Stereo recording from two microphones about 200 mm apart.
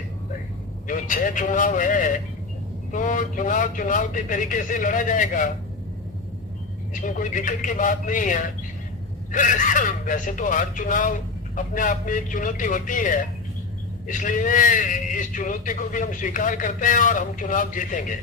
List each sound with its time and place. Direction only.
0.9 s a man's voice: 40° left (ahead or behind)
6.9 s a man's voice: 40° left (ahead or behind)